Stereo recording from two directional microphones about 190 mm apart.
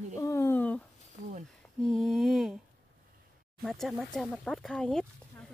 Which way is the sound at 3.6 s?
Centre (ahead or behind).